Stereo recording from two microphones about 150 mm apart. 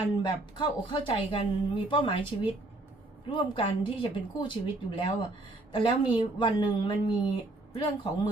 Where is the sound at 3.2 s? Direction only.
35° left (ahead or behind).